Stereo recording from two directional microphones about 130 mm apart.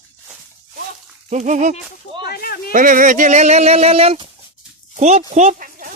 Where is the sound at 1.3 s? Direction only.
70° right (ahead or behind).